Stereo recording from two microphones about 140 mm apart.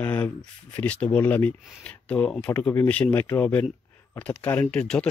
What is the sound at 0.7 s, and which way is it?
Speech, 10° left (ahead or behind).